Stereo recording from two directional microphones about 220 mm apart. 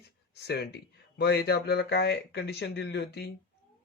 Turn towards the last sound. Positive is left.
turn(degrees=50)  # may be behind; listen again after turning